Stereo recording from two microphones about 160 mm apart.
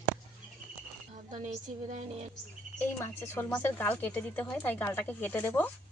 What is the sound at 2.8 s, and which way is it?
Speech, 15° left (ahead or behind).